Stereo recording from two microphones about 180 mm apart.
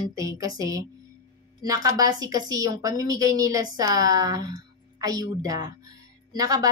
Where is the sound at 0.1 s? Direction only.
20° right (ahead or behind).